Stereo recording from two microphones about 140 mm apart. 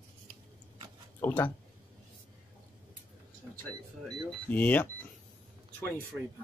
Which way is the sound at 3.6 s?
10° left (ahead or behind).